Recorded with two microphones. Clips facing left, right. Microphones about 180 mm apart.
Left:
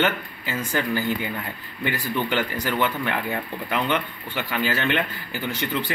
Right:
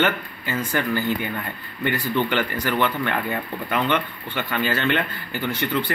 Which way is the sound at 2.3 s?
15° left (ahead or behind).